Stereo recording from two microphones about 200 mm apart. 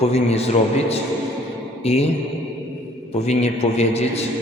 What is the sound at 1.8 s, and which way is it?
Speech, 30° left (ahead or behind).